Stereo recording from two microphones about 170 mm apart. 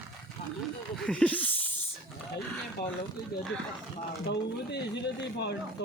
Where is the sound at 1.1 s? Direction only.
10° left (ahead or behind).